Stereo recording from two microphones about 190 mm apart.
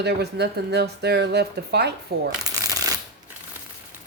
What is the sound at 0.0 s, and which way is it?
Speech, 60° right (ahead or behind).